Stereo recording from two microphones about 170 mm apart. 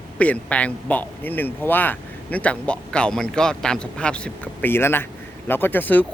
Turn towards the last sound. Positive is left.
turn(degrees=10)  # may be behind; listen again after turning